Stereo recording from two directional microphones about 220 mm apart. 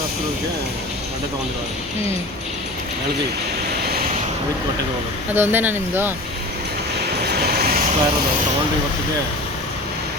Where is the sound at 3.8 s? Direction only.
45° right (ahead or behind).